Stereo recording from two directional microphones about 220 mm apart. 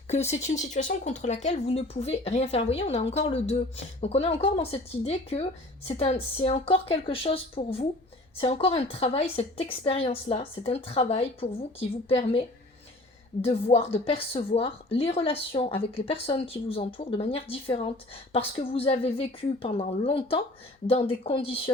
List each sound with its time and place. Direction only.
0.1 s a woman's voice: 30° left (ahead or behind)
13.4 s a woman's voice: 25° left (ahead or behind)